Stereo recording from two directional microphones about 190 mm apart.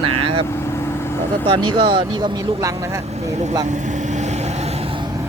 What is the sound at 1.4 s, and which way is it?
Speech, 25° right (ahead or behind).